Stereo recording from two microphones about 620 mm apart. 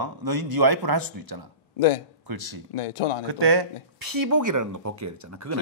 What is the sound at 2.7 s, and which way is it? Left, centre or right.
Speech, left.